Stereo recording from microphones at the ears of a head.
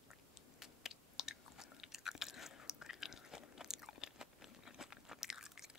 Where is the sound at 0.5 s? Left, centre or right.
Left.